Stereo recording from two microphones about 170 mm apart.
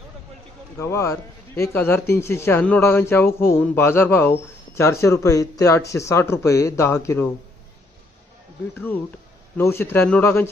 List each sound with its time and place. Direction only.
0.8 s speech: 15° left (ahead or behind)
8.7 s speech: 10° left (ahead or behind)